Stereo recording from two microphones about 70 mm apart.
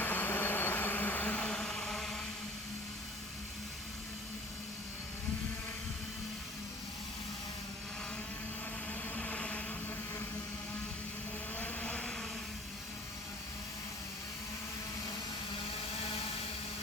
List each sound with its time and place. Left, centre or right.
0.0 s vehicle: left; by 2.2 s centre
9.1 s vehicle: centre
11.5 s vehicle: left